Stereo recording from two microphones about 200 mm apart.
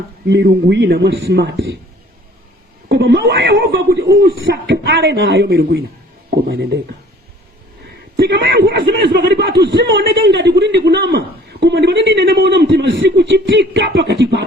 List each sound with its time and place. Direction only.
0.3 s a man's voice: 60° right (ahead or behind)
2.9 s a man's voice: 60° right (ahead or behind)
8.1 s a man's voice: 60° right (ahead or behind)